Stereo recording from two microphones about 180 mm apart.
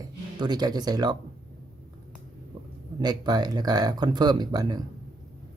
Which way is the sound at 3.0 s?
25° right (ahead or behind).